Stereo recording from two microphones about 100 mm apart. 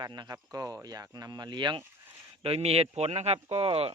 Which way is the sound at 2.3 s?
75° right (ahead or behind).